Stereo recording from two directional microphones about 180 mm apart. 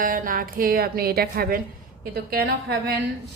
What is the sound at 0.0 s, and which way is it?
A woman's voice, 50° right (ahead or behind).